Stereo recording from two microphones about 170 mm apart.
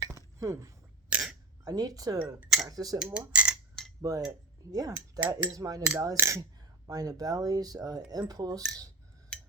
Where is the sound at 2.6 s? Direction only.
20° right (ahead or behind).